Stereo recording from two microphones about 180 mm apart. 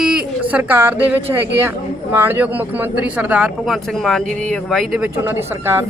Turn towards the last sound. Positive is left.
turn(degrees=-15)  # may be behind; listen again after turning